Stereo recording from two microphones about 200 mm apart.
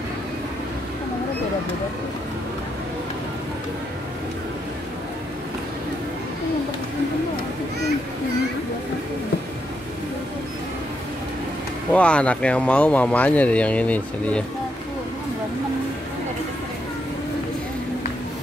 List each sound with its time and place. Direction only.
11.9 s speech: 5° left (ahead or behind)